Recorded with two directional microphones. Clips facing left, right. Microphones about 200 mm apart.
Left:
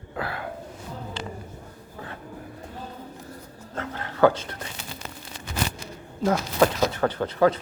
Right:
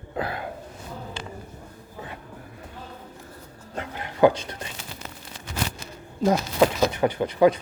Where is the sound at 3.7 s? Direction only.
15° right (ahead or behind).